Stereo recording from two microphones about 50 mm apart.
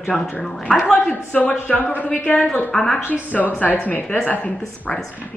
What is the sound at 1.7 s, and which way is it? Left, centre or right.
A woman's voice, left.